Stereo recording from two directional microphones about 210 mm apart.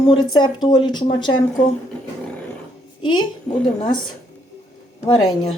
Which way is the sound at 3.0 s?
20° left (ahead or behind).